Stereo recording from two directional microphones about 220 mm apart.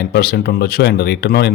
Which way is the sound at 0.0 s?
45° left (ahead or behind).